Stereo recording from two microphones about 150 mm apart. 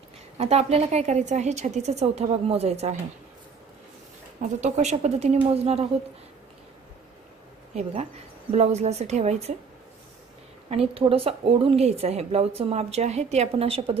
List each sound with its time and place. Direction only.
0.4 s a woman's voice: 45° right (ahead or behind)
4.4 s a woman's voice: 50° right (ahead or behind)
7.7 s a woman's voice: 45° right (ahead or behind)
10.7 s a woman's voice: 40° right (ahead or behind)